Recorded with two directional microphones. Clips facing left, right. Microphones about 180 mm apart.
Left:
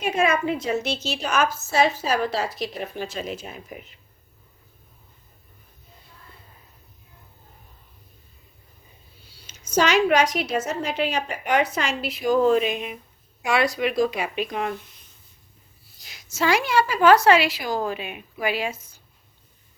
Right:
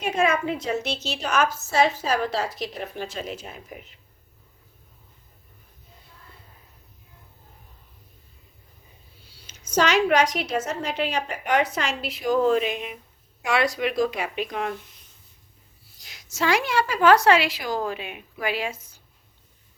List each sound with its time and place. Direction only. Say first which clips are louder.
0.0 s a woman's voice: left 1 dB; 10° left (ahead or behind)
9.5 s a woman's voice: left 1 dB; 10° left (ahead or behind)
16.0 s a woman's voice: left 2 dB; 5° left (ahead or behind)